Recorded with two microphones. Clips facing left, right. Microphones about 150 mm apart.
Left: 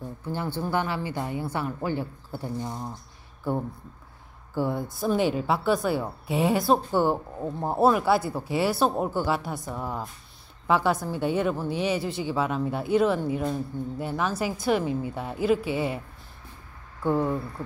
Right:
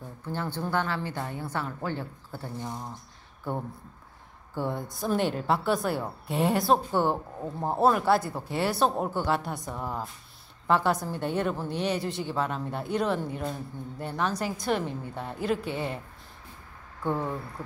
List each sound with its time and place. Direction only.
0.2 s a woman's voice: 10° left (ahead or behind)
4.6 s a woman's voice: 5° left (ahead or behind)
17.0 s a woman's voice: 5° left (ahead or behind)